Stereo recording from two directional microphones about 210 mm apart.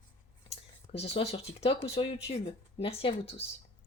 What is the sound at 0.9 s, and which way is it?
Speech, 25° left (ahead or behind).